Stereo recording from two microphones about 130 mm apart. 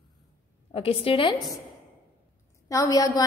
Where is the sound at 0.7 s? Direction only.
50° left (ahead or behind).